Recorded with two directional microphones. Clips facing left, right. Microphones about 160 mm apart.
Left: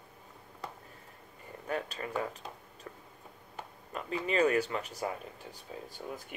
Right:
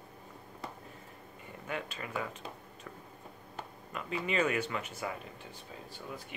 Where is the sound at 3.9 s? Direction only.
35° left (ahead or behind).